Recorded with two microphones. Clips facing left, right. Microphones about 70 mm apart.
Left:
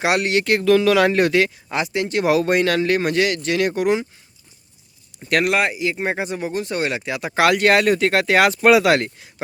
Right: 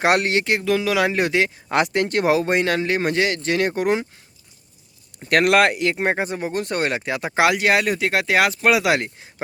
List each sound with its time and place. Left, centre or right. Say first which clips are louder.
0.0 s speech: right 1 dB; right
0.4 s speech: left 5 dB; centre
1.7 s speech: right 6 dB; right
2.3 s speech: left 4 dB; right
5.3 s speech: right 3 dB; right
6.6 s speech: right 1 dB; right; by 9.1 s centre